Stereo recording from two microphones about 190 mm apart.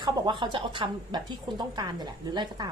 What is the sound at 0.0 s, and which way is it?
A woman's voice, 25° right (ahead or behind).